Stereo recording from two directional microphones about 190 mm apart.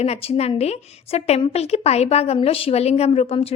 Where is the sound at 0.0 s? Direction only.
30° left (ahead or behind).